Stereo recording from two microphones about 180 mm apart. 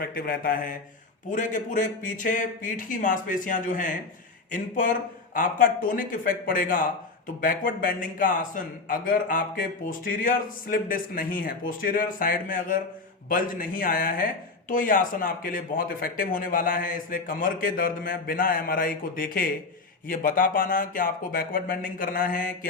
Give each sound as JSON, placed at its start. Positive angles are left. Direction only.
{"t": 0.0, "sound": "a man's voice", "side_deg": 55}